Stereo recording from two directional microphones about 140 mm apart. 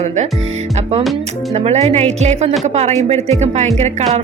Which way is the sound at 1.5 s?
50° right (ahead or behind).